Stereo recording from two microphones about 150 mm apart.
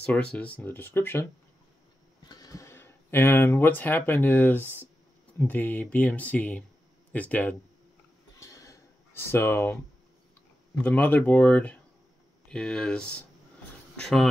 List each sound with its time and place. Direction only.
0.0 s speech: 10° left (ahead or behind)
2.2 s speech: 25° left (ahead or behind)
8.4 s a sound: 20° left (ahead or behind)
10.8 s speech: 10° left (ahead or behind)